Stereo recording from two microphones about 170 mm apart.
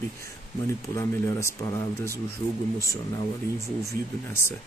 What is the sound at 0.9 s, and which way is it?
Speech, 15° left (ahead or behind).